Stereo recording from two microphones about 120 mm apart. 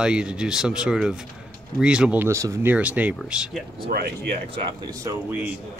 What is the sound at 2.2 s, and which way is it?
Speech, 20° right (ahead or behind).